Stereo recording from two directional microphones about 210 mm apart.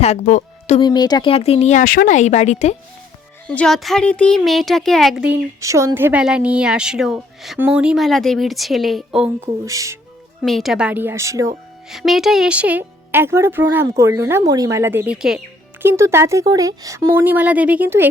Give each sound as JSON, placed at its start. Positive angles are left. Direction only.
{"t": 0.0, "sound": "speech", "side_deg": 35}
{"t": 0.8, "sound": "speech", "side_deg": 20}
{"t": 3.4, "sound": "speech", "side_deg": 5}
{"t": 9.6, "sound": "speech", "side_deg": -15}
{"t": 10.4, "sound": "speech", "side_deg": 0}
{"t": 11.9, "sound": "speech", "side_deg": 0}